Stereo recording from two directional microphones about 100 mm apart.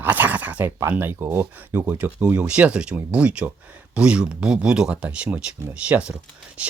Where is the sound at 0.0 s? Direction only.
15° right (ahead or behind).